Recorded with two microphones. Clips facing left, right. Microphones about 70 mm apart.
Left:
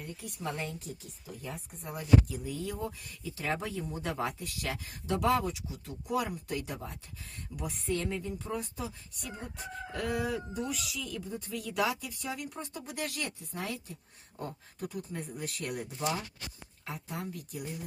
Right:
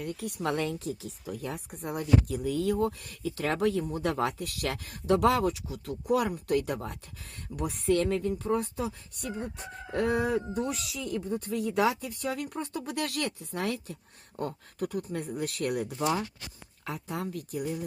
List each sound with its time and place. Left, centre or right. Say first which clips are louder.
0.0 s a woman's voice: right 7 dB; right
3.8 s speech: right 5 dB; right
9.9 s speech: right 6 dB; right
11.6 s speech: right 4 dB; right